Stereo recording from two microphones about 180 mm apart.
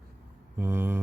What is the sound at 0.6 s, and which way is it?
Speech, 10° right (ahead or behind).